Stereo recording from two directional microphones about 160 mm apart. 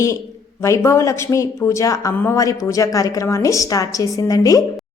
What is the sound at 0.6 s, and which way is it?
A woman's voice, 20° left (ahead or behind).